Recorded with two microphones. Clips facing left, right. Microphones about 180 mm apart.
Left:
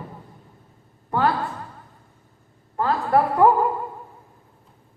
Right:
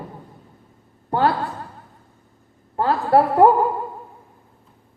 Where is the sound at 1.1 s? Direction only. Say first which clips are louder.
Right 2 dB; 30° right (ahead or behind).